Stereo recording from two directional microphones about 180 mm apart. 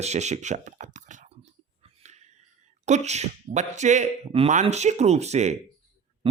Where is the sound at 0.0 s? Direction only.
40° right (ahead or behind).